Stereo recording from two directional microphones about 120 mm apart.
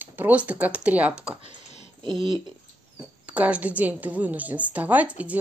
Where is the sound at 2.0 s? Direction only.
40° right (ahead or behind).